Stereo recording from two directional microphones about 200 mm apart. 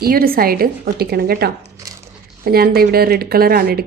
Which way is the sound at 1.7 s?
15° right (ahead or behind).